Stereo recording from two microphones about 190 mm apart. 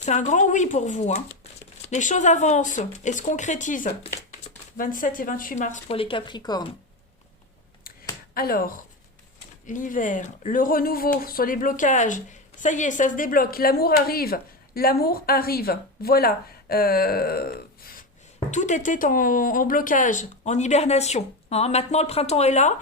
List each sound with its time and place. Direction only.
0.0 s speech: 40° left (ahead or behind); by 6.7 s 20° left (ahead or behind)
8.4 s speech: 50° left (ahead or behind)
18.3 s speech: 40° left (ahead or behind)